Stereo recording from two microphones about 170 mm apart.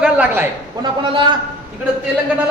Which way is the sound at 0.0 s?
10° right (ahead or behind).